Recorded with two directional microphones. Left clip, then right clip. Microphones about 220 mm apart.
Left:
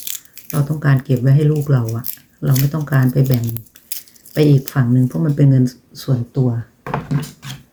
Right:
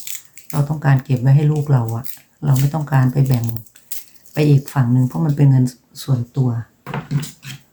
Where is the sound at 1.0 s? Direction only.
15° right (ahead or behind).